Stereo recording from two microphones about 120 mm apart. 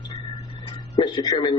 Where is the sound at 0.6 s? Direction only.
35° left (ahead or behind).